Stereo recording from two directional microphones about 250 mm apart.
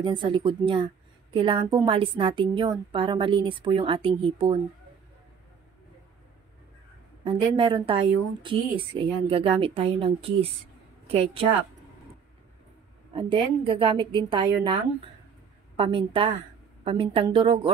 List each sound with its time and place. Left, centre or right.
0.0 s a woman's voice: centre
7.2 s a woman's voice: centre
13.1 s a woman's voice: right